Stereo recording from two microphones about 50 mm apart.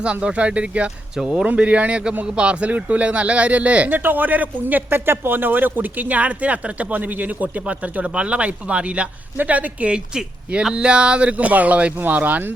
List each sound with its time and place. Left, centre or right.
0.0 s speech: right
1.1 s speech: centre
1.5 s speech: right
9.9 s speech: centre; by 12.4 s right